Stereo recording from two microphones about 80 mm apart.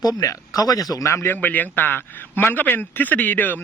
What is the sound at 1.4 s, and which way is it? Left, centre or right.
A man's voice, left.